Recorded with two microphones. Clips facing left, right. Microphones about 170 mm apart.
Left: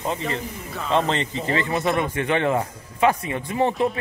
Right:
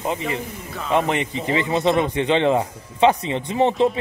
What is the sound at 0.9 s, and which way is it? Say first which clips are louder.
Speech: right 2 dB; 15° right (ahead or behind).